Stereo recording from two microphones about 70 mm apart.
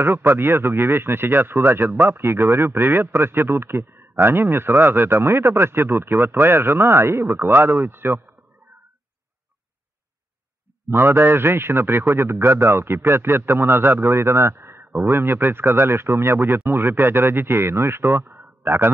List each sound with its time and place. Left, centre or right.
0.0 s speech: right
10.9 s speech: right